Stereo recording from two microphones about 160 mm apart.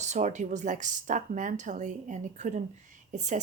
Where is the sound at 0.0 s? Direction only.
45° right (ahead or behind).